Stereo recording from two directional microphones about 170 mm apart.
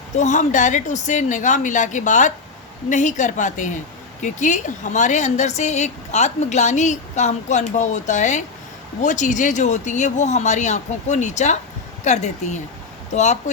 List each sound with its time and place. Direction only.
0.2 s speech: 45° left (ahead or behind)